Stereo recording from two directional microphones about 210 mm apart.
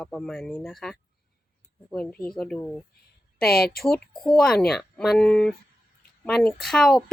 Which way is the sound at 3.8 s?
Centre (ahead or behind).